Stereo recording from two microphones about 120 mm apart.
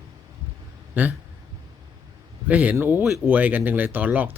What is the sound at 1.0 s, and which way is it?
Speech, 15° right (ahead or behind).